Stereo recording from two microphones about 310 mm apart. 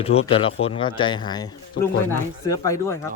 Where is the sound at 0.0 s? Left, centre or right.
Centre.